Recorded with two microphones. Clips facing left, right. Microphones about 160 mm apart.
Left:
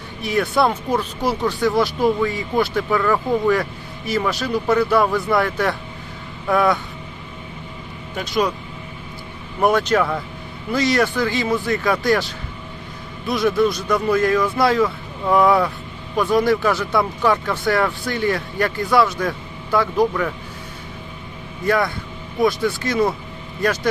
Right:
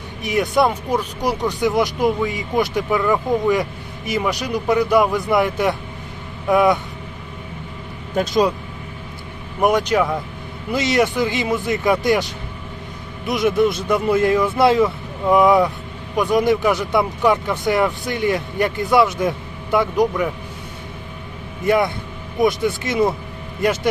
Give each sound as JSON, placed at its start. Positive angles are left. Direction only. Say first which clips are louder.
{"t": 0.2, "sound": "speech", "louder": "right 1 dB", "side_deg": -20}
{"t": 8.1, "sound": "speech", "louder": "right 8 dB", "side_deg": -45}
{"t": 9.6, "sound": "speech", "louder": "even", "side_deg": -15}
{"t": 21.6, "sound": "speech", "louder": "right 2 dB", "side_deg": -20}